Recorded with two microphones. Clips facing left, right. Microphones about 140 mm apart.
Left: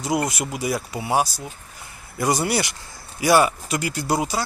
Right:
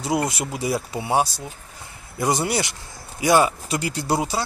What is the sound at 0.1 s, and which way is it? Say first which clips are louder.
Speech: even; 25° right (ahead or behind).